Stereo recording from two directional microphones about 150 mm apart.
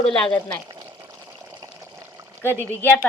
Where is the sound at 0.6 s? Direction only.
25° right (ahead or behind).